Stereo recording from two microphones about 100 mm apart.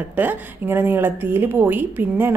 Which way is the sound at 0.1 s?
20° right (ahead or behind).